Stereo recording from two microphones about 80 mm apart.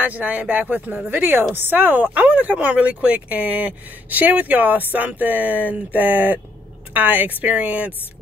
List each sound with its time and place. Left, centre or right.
0.0 s a woman's voice: centre